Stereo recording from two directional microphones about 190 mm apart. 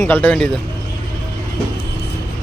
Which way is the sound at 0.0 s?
10° left (ahead or behind).